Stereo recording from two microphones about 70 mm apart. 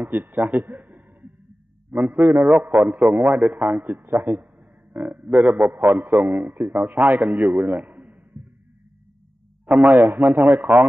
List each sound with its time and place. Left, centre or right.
0.0 s a man's voice: right
3.4 s a man's voice: centre
3.8 s a man's voice: right
7.6 s a sound: right
9.7 s a man's voice: right